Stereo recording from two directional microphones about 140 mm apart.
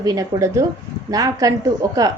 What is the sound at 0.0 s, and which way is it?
A woman's voice, 25° right (ahead or behind).